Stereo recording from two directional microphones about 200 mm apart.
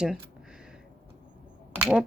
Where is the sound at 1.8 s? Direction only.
5° right (ahead or behind).